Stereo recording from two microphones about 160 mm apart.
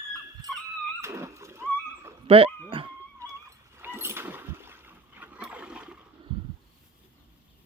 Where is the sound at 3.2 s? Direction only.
15° right (ahead or behind).